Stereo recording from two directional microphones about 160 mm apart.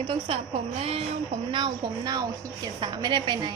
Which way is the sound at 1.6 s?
25° right (ahead or behind).